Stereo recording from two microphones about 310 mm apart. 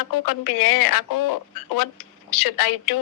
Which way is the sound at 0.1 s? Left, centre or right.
Left.